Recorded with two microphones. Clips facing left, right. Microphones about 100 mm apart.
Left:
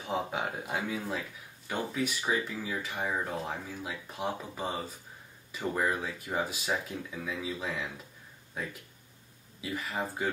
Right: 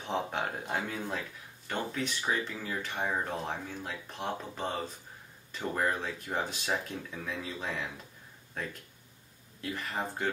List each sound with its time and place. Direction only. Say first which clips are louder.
0.0 s speech: even; 5° left (ahead or behind)